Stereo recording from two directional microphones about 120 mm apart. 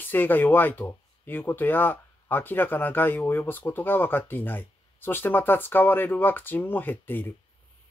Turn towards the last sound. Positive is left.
turn(degrees=15)  # may be behind; listen again after turning